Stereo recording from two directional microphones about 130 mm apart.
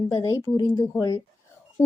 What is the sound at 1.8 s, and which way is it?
Speech, 15° left (ahead or behind).